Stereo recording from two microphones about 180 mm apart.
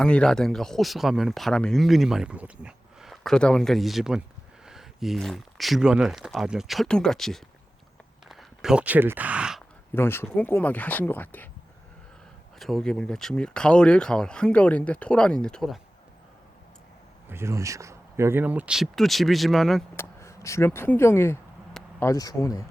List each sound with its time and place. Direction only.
0.0 s speech: 5° left (ahead or behind)
9.9 s speech: 10° left (ahead or behind)
12.5 s speech: centre (ahead or behind)
17.2 s speech: 15° right (ahead or behind)
20.0 s speech: 15° left (ahead or behind)